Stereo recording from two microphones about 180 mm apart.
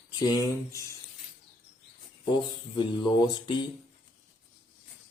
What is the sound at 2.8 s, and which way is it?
Speech, 25° left (ahead or behind).